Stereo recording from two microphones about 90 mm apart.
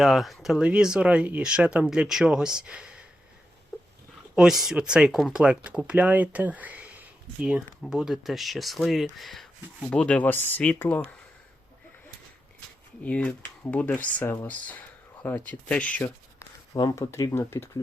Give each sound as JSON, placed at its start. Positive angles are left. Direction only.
{"t": 0.0, "sound": "speech", "side_deg": 0}
{"t": 0.6, "sound": "speech", "side_deg": -10}
{"t": 4.4, "sound": "speech", "side_deg": -5}
{"t": 13.0, "sound": "speech", "side_deg": 15}
{"t": 16.9, "sound": "speech", "side_deg": 35}